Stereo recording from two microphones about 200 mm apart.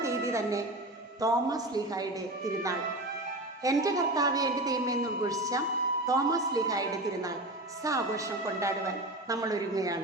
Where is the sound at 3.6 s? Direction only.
15° right (ahead or behind).